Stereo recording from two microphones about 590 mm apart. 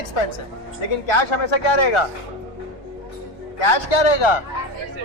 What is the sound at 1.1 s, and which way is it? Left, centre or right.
Speech, left.